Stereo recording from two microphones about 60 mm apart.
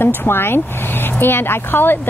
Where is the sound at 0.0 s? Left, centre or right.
Left.